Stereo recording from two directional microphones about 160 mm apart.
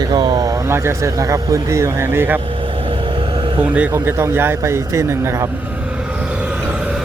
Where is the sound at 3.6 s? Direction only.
10° right (ahead or behind).